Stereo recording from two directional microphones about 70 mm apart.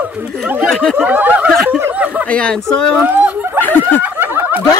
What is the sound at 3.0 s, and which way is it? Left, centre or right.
Speech, right.